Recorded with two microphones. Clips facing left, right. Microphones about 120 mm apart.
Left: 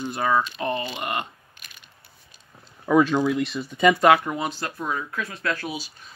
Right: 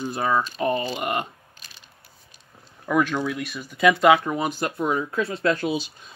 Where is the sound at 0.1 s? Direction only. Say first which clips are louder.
Left 1 dB; centre (ahead or behind).